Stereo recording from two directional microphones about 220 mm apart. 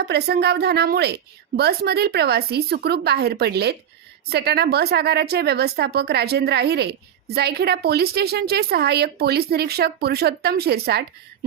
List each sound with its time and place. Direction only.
0.0 s a woman's voice: 50° right (ahead or behind)